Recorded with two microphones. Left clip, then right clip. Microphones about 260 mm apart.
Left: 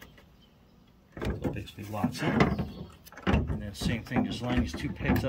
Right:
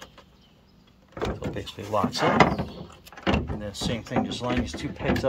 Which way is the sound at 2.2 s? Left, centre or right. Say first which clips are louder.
Right 8 dB; centre.